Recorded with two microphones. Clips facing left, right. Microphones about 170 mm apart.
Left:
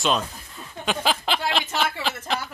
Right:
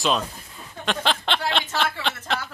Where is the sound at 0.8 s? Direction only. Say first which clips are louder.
Even; 5° left (ahead or behind).